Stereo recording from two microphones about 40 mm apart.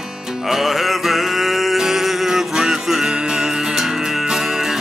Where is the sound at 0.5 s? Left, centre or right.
Centre.